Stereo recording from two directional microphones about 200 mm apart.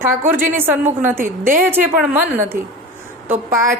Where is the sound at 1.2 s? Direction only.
45° right (ahead or behind).